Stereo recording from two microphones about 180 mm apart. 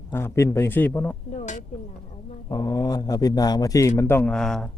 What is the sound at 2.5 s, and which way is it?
A man's voice, 20° left (ahead or behind).